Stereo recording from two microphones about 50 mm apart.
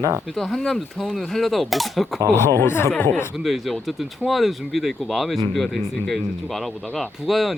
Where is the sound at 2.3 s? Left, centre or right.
Left.